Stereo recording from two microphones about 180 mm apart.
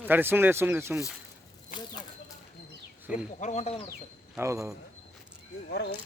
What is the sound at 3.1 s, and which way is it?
Speech, 5° right (ahead or behind).